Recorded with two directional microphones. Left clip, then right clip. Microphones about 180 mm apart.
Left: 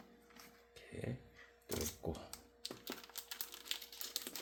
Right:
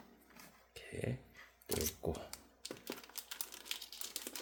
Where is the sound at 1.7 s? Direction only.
25° right (ahead or behind).